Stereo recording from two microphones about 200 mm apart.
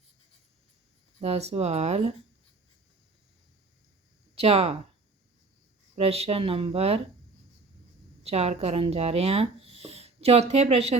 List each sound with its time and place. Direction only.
1.2 s speech: 30° right (ahead or behind)
4.4 s speech: 30° right (ahead or behind)
6.0 s speech: 30° right (ahead or behind)
8.2 s speech: 30° right (ahead or behind)